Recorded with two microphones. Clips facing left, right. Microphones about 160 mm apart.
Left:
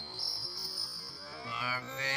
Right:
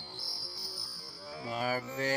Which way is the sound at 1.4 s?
45° right (ahead or behind).